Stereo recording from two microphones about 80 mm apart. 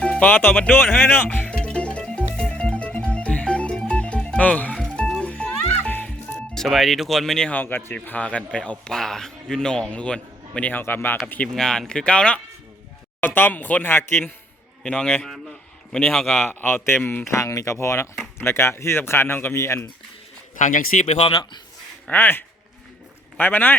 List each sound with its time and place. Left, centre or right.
0.0 s music: centre
7.5 s a man's voice: left
11.5 s a man's voice: centre
13.2 s speech: left
14.8 s a man's voice: centre
15.2 s a sound: centre
16.1 s speech: centre
16.4 s speech: left
17.4 s speech: left
22.1 s speech: left